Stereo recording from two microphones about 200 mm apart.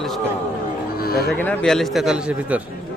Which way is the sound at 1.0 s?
50° left (ahead or behind).